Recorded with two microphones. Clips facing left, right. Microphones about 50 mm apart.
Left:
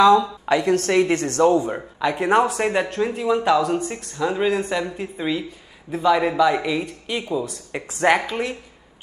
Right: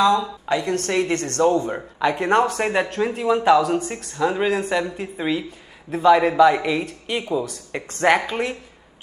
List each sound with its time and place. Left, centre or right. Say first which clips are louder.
0.5 s speech: left 3 dB; centre
1.6 s speech: right 1 dB; centre